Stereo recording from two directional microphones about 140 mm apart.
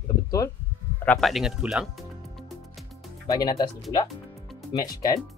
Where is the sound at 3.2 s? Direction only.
25° left (ahead or behind).